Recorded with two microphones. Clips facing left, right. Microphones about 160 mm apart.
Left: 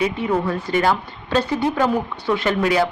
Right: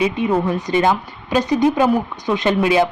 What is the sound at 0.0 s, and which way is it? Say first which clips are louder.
Speech: right 3 dB; 20° right (ahead or behind).